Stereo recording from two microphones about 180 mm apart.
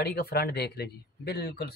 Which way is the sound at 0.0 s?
60° left (ahead or behind).